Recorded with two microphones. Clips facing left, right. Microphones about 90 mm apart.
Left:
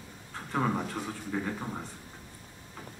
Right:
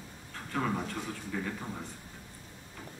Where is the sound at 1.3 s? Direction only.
25° left (ahead or behind).